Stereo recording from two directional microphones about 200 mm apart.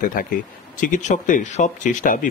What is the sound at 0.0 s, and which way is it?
Speech, 40° left (ahead or behind).